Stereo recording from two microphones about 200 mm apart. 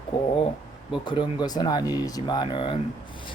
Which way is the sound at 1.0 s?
20° left (ahead or behind).